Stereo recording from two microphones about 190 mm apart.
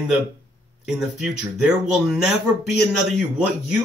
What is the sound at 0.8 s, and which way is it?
Speech, 5° right (ahead or behind).